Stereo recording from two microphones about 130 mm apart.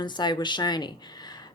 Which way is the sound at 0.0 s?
35° left (ahead or behind).